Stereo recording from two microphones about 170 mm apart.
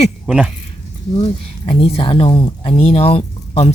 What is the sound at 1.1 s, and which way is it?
Speech, 35° left (ahead or behind).